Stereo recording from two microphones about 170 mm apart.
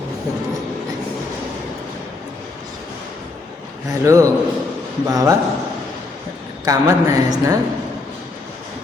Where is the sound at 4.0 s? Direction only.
20° right (ahead or behind).